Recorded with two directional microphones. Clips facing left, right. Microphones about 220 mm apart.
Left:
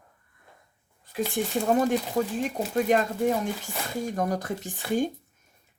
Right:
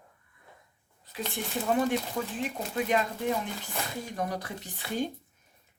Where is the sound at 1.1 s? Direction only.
45° left (ahead or behind).